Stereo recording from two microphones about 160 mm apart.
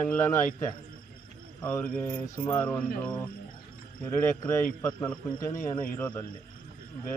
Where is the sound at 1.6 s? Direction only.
10° left (ahead or behind).